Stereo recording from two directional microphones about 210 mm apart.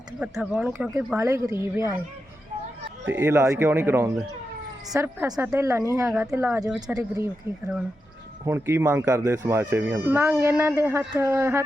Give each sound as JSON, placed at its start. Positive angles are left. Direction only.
{"t": 0.2, "sound": "speech", "side_deg": 0}
{"t": 3.1, "sound": "speech", "side_deg": -10}
{"t": 6.8, "sound": "speech", "side_deg": -15}
{"t": 8.4, "sound": "speech", "side_deg": -10}